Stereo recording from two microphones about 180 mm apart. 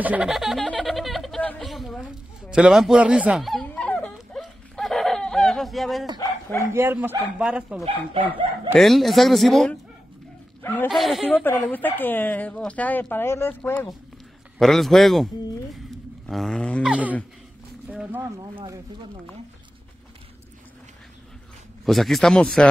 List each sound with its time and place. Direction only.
0.0 s a sound: 5° right (ahead or behind)
6.6 s speech: 15° right (ahead or behind)
7.8 s speech: 30° right (ahead or behind)
8.7 s speech: centre (ahead or behind)
10.9 s speech: centre (ahead or behind)
11.4 s speech: 10° left (ahead or behind)
16.3 s speech: centre (ahead or behind)
17.8 s speech: 10° right (ahead or behind)
21.8 s speech: centre (ahead or behind)